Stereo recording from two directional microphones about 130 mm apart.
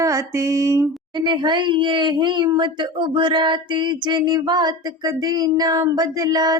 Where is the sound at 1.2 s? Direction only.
35° right (ahead or behind).